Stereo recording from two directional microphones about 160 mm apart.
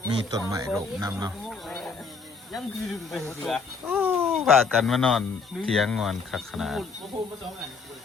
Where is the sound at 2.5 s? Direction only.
Centre (ahead or behind).